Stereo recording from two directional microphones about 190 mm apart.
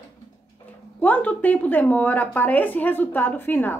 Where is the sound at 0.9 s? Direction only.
10° left (ahead or behind).